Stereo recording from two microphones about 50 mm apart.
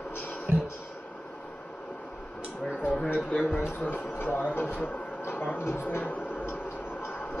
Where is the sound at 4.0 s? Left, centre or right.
Left.